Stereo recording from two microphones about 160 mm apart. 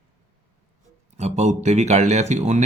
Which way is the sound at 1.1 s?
45° right (ahead or behind).